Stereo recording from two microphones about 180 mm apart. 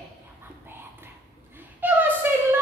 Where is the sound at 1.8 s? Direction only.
10° right (ahead or behind).